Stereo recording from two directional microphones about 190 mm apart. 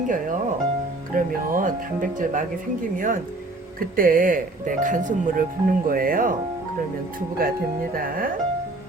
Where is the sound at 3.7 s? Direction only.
50° right (ahead or behind).